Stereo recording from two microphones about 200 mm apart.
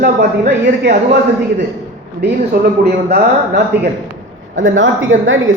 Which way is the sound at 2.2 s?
60° right (ahead or behind).